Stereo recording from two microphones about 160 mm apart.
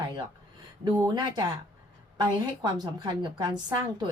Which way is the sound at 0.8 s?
25° right (ahead or behind).